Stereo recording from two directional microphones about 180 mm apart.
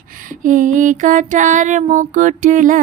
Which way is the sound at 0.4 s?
45° right (ahead or behind).